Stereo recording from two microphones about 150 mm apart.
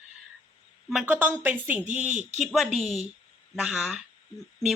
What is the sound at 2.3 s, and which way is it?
Speech, centre (ahead or behind).